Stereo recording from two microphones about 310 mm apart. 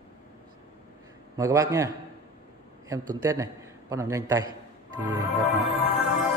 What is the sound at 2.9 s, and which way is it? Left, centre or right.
A man's voice, centre.